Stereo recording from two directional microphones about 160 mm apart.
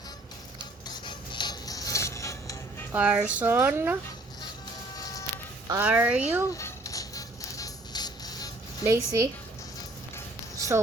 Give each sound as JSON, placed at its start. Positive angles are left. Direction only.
{"t": 0.9, "sound": "music", "side_deg": 30}
{"t": 2.9, "sound": "speech", "side_deg": -5}
{"t": 4.9, "sound": "telephone dialing", "side_deg": 20}
{"t": 5.8, "sound": "speech", "side_deg": -10}
{"t": 6.5, "sound": "music", "side_deg": 20}
{"t": 8.8, "sound": "speech", "side_deg": -20}